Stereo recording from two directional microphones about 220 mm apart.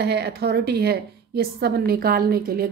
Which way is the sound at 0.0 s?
45° right (ahead or behind).